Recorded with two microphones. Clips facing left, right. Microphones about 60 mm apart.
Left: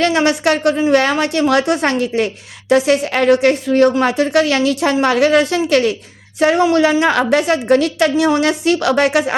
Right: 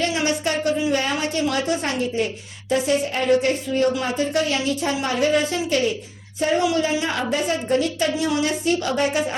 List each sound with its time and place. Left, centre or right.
0.0 s a woman's voice: left